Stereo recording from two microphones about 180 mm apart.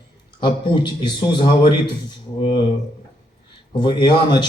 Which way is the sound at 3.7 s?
25° left (ahead or behind).